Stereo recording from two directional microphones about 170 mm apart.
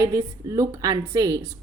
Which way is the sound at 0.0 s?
20° right (ahead or behind).